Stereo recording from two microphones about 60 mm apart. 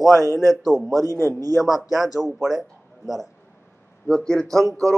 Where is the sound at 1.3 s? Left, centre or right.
Right.